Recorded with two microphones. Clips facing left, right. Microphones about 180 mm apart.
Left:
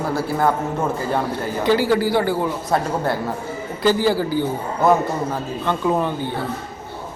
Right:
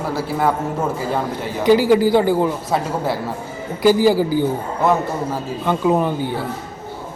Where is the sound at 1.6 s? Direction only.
15° right (ahead or behind).